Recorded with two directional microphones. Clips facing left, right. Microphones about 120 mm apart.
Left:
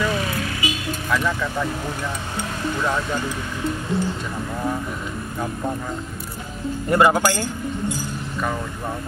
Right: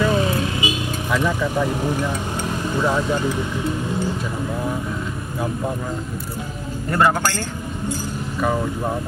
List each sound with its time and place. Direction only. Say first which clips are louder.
0.0 s vehicle: right 4 dB; 25° right (ahead or behind)
1.1 s speech: right 2 dB; 15° right (ahead or behind)
6.9 s speech: left 2 dB; 15° left (ahead or behind)